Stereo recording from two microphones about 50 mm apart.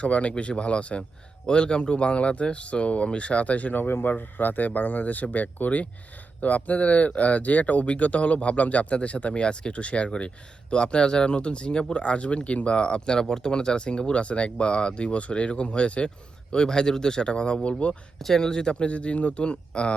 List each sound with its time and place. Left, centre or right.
0.0 s speech: left
3.8 s speech: left
4.1 s speech: left
18.2 s speech: centre